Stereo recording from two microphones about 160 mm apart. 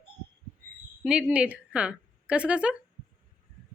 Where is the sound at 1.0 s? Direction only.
5° right (ahead or behind).